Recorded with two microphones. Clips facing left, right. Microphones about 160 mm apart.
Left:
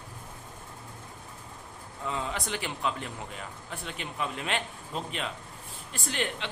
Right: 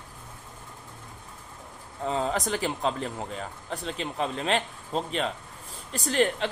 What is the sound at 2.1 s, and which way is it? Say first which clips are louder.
A man's voice: right 6 dB; 40° right (ahead or behind).